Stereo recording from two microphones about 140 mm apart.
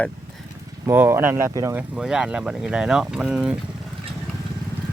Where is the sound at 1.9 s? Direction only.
5° right (ahead or behind).